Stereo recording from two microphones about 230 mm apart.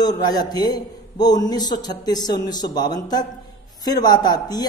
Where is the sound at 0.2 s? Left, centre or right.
Centre.